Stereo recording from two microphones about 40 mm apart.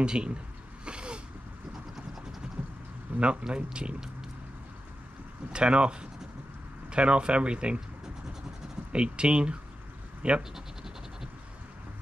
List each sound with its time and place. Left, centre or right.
0.0 s speech: right
0.8 s a sound: right
2.4 s vehicle: centre
3.2 s speech: right
5.5 s speech: right
8.9 s speech: right
10.5 s scratch: centre